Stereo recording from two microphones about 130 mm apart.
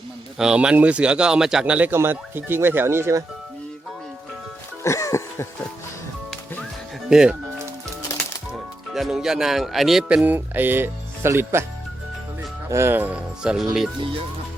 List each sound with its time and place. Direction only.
0.3 s speech: 5° right (ahead or behind); by 3.2 s 20° right (ahead or behind)
4.8 s music: 25° left (ahead or behind)
7.1 s speech: 5° right (ahead or behind)
8.5 s speech: centre (ahead or behind); by 11.6 s 20° right (ahead or behind)
12.6 s speech: 20° right (ahead or behind); by 13.9 s 5° right (ahead or behind)